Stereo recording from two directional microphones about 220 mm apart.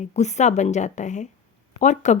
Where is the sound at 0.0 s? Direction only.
30° left (ahead or behind).